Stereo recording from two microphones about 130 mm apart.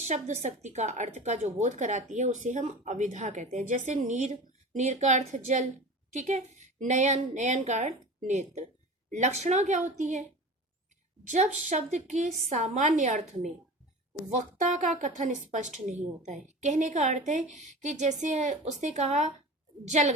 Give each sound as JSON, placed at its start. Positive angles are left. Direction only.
{"t": 0.0, "sound": "a woman's voice", "side_deg": -65}
{"t": 15.0, "sound": "a woman's voice", "side_deg": -75}